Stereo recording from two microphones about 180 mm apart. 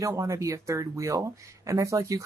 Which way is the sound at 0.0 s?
15° right (ahead or behind).